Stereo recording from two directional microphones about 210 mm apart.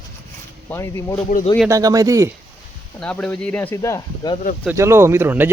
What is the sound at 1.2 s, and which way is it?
Speech, 40° left (ahead or behind).